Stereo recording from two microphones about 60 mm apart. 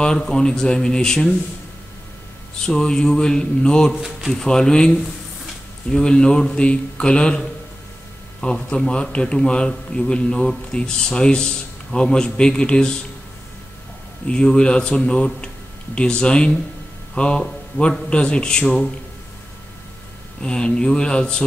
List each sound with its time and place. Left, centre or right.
0.0 s a man's voice: centre
2.6 s a man's voice: centre
14.2 s a man's voice: centre
20.4 s a man's voice: centre